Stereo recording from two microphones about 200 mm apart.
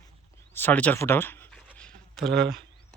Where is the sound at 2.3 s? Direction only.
55° right (ahead or behind).